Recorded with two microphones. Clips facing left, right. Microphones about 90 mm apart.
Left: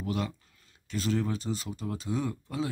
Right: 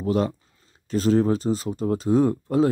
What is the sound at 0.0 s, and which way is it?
Speech, 35° right (ahead or behind).